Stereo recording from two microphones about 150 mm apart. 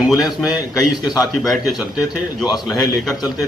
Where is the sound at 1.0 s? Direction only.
25° left (ahead or behind).